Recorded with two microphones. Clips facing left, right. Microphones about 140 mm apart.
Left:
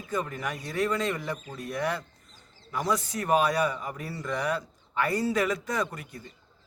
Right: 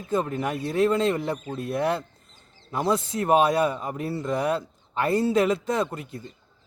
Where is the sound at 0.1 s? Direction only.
25° right (ahead or behind).